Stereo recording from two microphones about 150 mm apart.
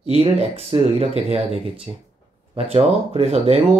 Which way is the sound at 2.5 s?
40° right (ahead or behind).